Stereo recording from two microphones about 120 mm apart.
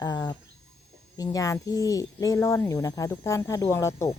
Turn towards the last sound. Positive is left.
turn(degrees=25)  # may be behind; listen again after turning